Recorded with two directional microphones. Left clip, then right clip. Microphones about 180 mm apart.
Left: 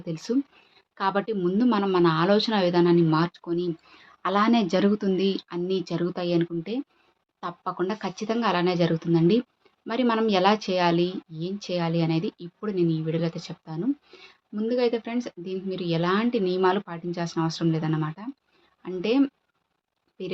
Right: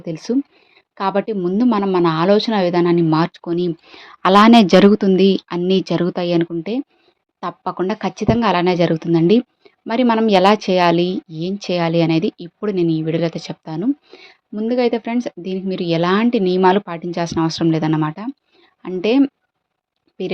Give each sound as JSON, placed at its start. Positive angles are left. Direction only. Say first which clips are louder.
{"t": 0.0, "sound": "a woman's voice", "louder": "right 7 dB", "side_deg": -30}